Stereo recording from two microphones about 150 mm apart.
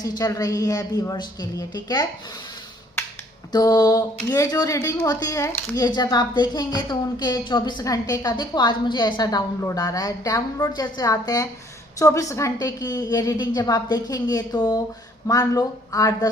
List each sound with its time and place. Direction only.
0.2 s speech: 20° left (ahead or behind)
3.5 s speech: 25° left (ahead or behind)